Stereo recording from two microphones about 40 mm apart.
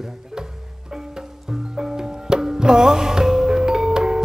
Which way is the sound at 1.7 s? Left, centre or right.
Centre.